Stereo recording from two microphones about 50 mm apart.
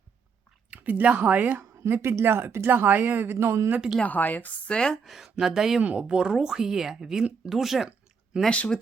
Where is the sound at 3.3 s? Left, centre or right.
Right.